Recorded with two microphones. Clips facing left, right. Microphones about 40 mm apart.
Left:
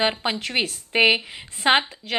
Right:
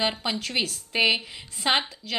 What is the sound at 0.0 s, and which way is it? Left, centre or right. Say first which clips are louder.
Speech: left 4 dB; left.